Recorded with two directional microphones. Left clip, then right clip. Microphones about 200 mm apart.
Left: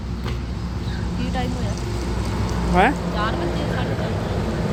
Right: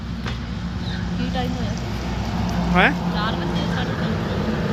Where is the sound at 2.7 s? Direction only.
20° left (ahead or behind).